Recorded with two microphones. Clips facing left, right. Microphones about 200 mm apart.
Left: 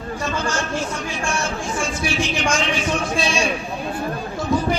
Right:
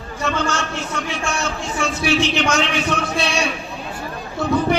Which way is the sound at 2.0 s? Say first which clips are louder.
Right 4 dB; 65° right (ahead or behind).